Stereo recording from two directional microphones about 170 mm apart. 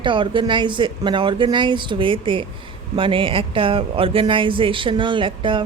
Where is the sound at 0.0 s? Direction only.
30° right (ahead or behind).